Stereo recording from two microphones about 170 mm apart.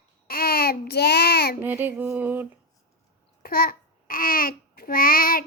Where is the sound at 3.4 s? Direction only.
60° left (ahead or behind).